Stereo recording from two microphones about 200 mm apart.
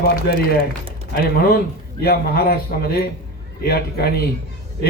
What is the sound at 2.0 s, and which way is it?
A man's voice, 50° left (ahead or behind).